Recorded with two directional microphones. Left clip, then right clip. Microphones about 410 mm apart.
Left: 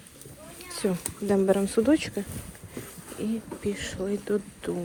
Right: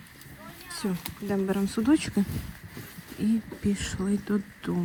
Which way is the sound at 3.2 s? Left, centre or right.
Centre.